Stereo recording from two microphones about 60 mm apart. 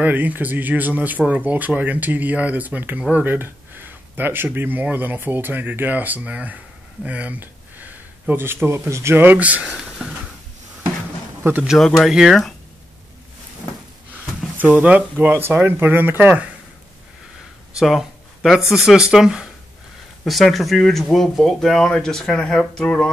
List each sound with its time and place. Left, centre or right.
0.0 s speech: right
3.0 s speech: centre
3.3 s speech: right
9.2 s speech: right
11.4 s speech: right
12.0 s speech: centre
14.6 s speech: right
15.1 s speech: right
17.7 s speech: centre
20.2 s speech: centre